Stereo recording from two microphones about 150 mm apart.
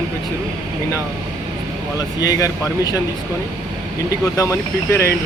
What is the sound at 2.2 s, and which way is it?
Speech, 25° left (ahead or behind).